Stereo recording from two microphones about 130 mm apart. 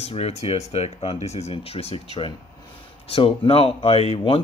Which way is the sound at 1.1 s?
55° left (ahead or behind).